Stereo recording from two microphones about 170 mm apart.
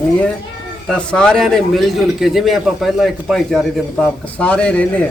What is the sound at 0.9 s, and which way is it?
A man's voice, 5° left (ahead or behind).